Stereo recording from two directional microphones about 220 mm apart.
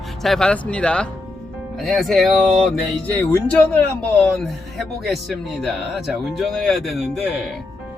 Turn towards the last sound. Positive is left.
turn(degrees=0)  # may be behind; listen again after turning